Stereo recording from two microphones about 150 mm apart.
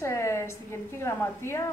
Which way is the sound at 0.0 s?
20° left (ahead or behind).